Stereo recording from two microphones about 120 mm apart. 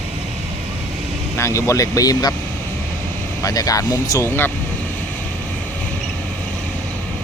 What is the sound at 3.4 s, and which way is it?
Speech, 30° left (ahead or behind).